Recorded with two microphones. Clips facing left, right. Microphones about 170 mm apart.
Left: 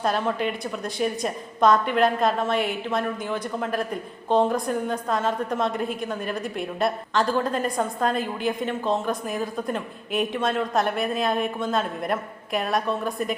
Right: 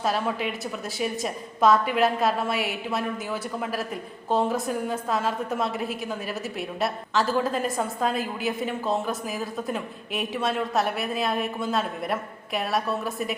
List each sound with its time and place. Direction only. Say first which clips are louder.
0.0 s a woman's voice: left 2 dB; 5° right (ahead or behind)